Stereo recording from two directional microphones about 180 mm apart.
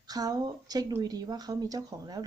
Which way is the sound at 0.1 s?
20° right (ahead or behind).